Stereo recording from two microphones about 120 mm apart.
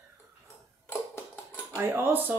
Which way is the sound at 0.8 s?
15° left (ahead or behind).